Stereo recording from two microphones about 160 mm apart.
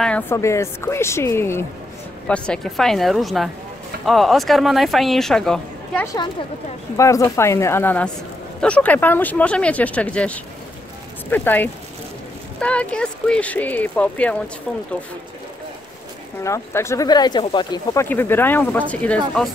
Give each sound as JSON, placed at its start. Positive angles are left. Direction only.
{"t": 0.0, "sound": "speech", "side_deg": 5}
{"t": 7.0, "sound": "speech", "side_deg": 20}
{"t": 16.4, "sound": "speech", "side_deg": 15}
{"t": 17.9, "sound": "speech", "side_deg": 15}